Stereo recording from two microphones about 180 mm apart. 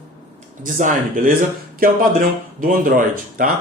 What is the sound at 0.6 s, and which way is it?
Speech, 45° right (ahead or behind).